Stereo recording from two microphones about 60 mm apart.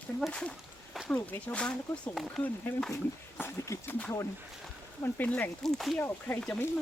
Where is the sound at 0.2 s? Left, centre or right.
Centre.